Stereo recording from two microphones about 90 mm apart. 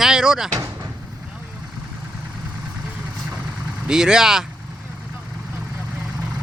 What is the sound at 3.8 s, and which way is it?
Speech, 10° right (ahead or behind).